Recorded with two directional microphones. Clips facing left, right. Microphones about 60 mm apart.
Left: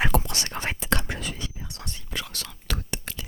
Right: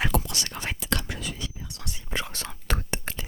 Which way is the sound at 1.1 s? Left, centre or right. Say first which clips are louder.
Left 1 dB; left.